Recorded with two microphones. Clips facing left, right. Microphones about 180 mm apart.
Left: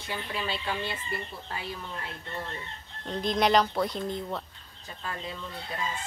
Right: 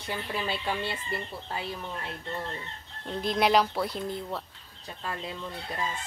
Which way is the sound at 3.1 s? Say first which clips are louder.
Even; 5° right (ahead or behind).